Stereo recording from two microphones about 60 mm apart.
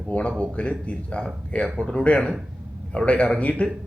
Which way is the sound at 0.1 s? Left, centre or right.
Centre.